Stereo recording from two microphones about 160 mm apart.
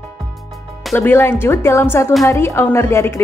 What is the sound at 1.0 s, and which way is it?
Speech, 15° left (ahead or behind).